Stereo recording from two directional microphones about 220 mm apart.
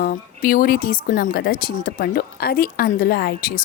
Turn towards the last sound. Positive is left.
turn(degrees=45)  # may be behind; listen again after turning